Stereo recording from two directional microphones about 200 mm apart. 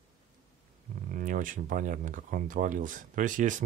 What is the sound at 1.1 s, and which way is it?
Speech, 40° right (ahead or behind).